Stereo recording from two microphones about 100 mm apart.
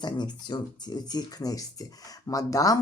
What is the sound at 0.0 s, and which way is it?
Speech, 45° left (ahead or behind).